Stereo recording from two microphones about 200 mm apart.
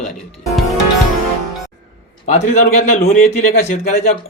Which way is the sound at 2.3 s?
40° left (ahead or behind).